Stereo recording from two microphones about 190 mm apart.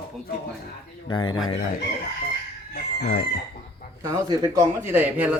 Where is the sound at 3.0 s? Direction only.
55° left (ahead or behind).